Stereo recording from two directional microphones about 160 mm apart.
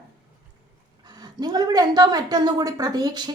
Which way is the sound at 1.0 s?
25° right (ahead or behind).